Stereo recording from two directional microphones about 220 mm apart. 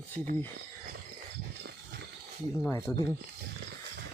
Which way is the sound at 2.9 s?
10° left (ahead or behind).